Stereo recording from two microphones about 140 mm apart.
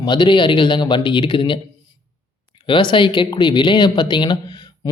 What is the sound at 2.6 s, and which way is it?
Speech, 35° left (ahead or behind).